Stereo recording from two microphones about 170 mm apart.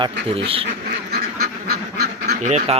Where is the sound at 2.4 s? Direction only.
40° right (ahead or behind).